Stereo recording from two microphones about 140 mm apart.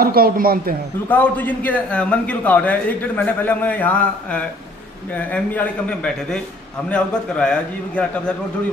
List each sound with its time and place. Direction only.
0.0 s a man's voice: 90° right
1.0 s a man's voice: 10° left (ahead or behind)